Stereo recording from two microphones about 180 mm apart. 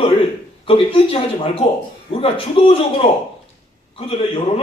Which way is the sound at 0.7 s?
30° left (ahead or behind).